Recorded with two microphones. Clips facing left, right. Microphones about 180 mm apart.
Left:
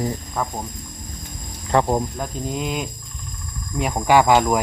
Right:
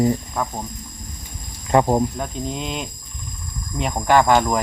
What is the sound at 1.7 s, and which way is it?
Speech, 10° right (ahead or behind).